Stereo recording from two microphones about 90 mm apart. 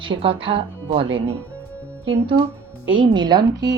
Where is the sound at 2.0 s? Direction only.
80° right.